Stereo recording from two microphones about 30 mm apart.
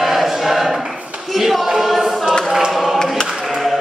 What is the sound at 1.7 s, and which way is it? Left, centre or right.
Choir, centre.